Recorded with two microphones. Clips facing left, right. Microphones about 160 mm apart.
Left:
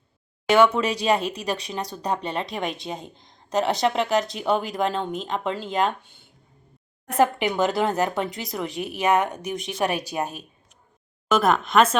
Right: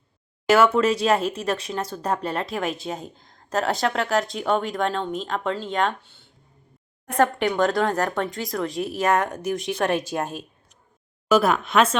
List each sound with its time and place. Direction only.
0.4 s speech: 5° right (ahead or behind)
6.0 s a sound: 15° left (ahead or behind)
7.2 s speech: 5° left (ahead or behind)